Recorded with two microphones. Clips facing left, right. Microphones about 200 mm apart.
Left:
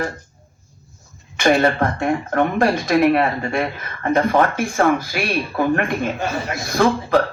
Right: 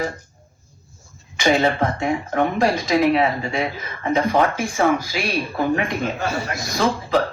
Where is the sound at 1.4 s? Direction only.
55° left (ahead or behind).